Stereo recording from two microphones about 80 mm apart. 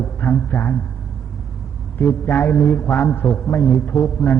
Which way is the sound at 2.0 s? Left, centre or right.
Left.